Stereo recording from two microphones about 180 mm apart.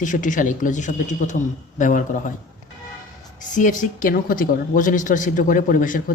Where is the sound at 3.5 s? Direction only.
45° left (ahead or behind).